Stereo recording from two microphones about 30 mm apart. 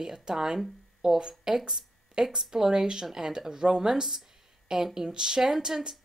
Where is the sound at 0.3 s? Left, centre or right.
Centre.